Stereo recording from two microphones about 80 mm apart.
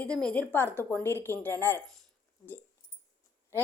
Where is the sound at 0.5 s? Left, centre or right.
Left.